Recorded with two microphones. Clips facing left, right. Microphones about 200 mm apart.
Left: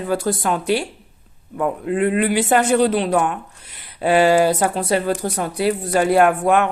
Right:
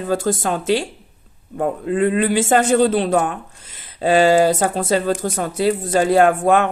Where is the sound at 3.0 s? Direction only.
45° right (ahead or behind).